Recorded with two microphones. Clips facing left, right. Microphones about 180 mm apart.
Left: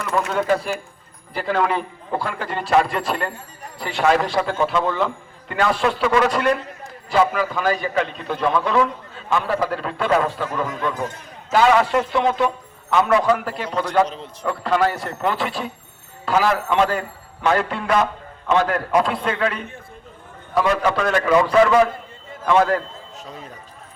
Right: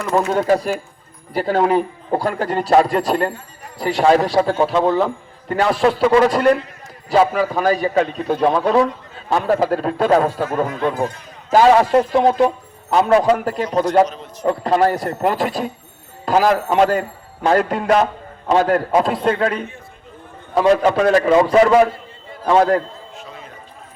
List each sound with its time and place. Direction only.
0.0 s a man's voice: 35° right (ahead or behind)
13.3 s a man's voice: 45° right (ahead or behind)
20.6 s a man's voice: 35° right (ahead or behind)